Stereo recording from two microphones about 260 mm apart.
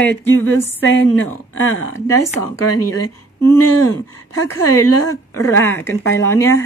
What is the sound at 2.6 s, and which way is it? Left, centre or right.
Speech, left.